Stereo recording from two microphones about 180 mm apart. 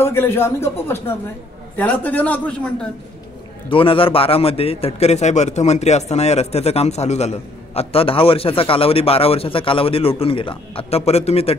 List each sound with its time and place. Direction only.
0.0 s a man's voice: 15° left (ahead or behind)
3.7 s a man's voice: 30° left (ahead or behind)